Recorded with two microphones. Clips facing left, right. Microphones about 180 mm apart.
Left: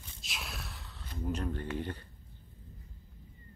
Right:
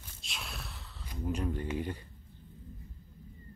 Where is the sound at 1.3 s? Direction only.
10° right (ahead or behind).